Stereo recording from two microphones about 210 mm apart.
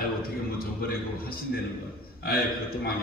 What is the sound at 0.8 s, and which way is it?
A man's voice, 45° left (ahead or behind).